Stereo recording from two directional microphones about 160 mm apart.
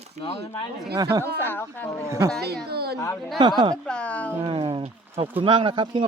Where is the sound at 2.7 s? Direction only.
85° right.